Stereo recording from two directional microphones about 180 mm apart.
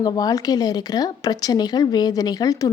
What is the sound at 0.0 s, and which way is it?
Speech, 20° left (ahead or behind).